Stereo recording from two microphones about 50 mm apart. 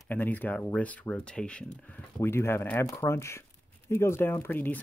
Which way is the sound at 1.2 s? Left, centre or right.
Centre.